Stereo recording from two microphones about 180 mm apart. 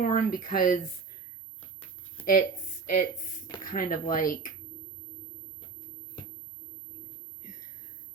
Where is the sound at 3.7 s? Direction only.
50° left (ahead or behind).